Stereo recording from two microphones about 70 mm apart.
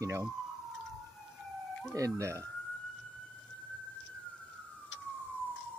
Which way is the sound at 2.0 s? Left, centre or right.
Right.